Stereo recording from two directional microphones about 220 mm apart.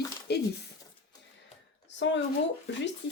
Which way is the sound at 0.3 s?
50° left (ahead or behind).